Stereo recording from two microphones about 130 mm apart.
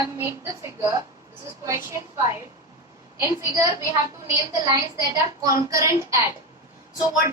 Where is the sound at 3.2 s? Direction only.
20° right (ahead or behind).